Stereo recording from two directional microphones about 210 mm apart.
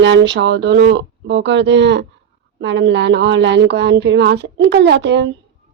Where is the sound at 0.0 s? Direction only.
60° right (ahead or behind).